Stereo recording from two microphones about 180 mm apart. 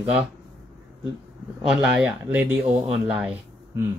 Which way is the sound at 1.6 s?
Centre (ahead or behind).